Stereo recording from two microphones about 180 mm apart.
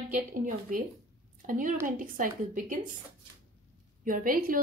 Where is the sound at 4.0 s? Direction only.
50° right (ahead or behind).